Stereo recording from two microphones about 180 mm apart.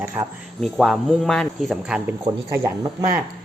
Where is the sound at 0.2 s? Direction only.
20° right (ahead or behind).